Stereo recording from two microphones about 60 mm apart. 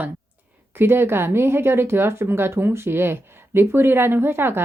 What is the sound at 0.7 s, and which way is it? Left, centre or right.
Speech, right.